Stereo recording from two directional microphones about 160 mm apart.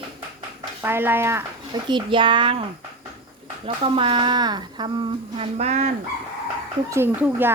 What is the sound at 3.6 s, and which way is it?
Speech, 30° right (ahead or behind).